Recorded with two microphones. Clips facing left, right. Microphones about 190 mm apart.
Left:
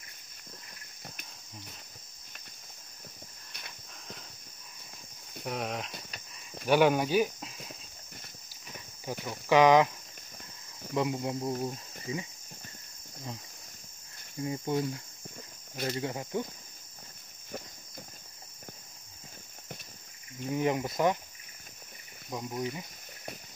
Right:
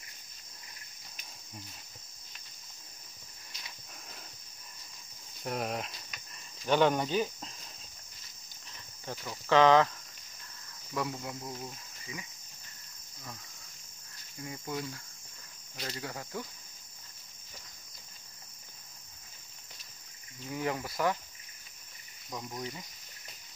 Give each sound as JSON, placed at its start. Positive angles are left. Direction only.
{"t": 5.4, "sound": "speech", "side_deg": 0}
{"t": 6.6, "sound": "speech", "side_deg": 10}
{"t": 9.2, "sound": "speech", "side_deg": 10}
{"t": 11.0, "sound": "speech", "side_deg": 25}
{"t": 14.4, "sound": "speech", "side_deg": 25}
{"t": 15.7, "sound": "cricket", "side_deg": 50}
{"t": 16.0, "sound": "speech", "side_deg": 20}
{"t": 20.5, "sound": "speech", "side_deg": 20}
{"t": 22.3, "sound": "speech", "side_deg": 15}